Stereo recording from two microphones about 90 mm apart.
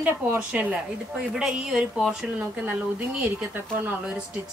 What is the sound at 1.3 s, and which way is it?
Speech, 5° right (ahead or behind).